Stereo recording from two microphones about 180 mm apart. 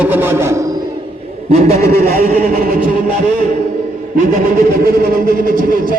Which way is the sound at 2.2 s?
50° right (ahead or behind).